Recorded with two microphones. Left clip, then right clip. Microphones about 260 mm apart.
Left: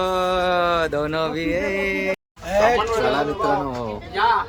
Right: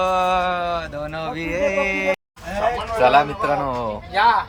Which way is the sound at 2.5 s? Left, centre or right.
Left.